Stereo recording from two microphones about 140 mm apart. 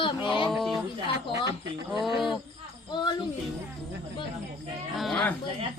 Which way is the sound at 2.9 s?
30° left (ahead or behind).